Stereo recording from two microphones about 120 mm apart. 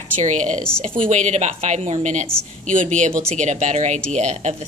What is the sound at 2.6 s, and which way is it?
Speech, 90° right.